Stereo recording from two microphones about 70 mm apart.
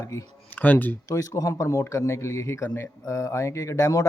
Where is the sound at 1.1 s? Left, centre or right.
Left.